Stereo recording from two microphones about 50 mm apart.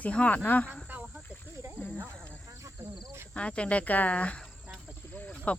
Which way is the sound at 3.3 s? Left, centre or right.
Left.